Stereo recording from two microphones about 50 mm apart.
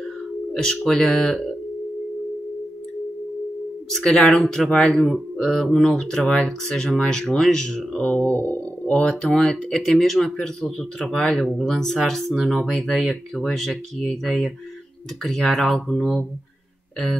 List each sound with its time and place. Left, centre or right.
0.5 s speech: centre
4.0 s speech: centre
8.4 s a sound: left
9.3 s speech: centre